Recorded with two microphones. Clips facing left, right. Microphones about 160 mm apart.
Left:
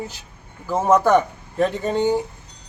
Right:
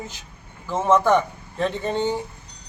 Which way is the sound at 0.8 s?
10° left (ahead or behind).